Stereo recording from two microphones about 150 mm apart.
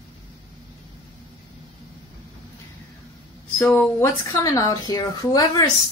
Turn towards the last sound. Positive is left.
turn(degrees=25)  # may be behind; listen again after turning